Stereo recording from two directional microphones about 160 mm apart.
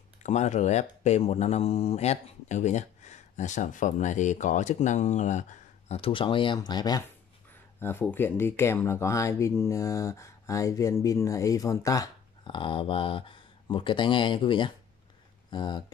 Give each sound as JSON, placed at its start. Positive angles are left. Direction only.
{"t": 0.2, "sound": "speech", "side_deg": 45}
{"t": 7.8, "sound": "speech", "side_deg": 10}